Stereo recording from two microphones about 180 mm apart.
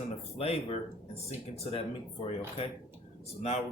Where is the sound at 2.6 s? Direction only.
30° left (ahead or behind).